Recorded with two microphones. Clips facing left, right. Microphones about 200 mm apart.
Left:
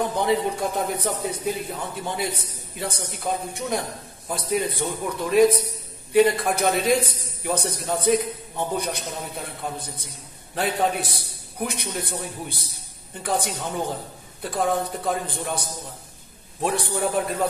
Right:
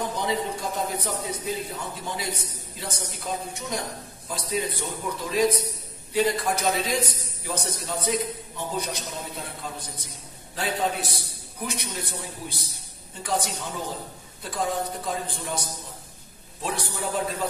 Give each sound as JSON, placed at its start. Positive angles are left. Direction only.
{"t": 0.2, "sound": "a man's voice", "side_deg": 60}
{"t": 16.6, "sound": "a man's voice", "side_deg": 60}